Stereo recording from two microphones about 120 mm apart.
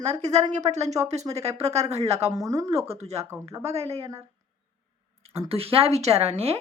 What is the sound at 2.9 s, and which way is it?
Speech, 60° right (ahead or behind).